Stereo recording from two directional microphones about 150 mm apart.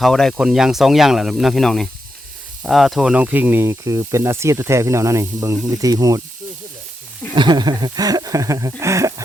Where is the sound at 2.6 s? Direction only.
Centre (ahead or behind); by 6.2 s 25° right (ahead or behind).